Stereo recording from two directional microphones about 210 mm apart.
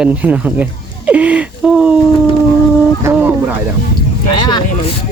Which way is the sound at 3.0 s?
10° right (ahead or behind).